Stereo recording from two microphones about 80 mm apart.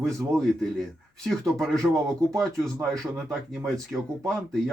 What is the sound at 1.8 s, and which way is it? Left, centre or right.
Speech, right.